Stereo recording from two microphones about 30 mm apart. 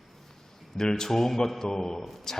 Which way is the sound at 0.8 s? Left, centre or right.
Left.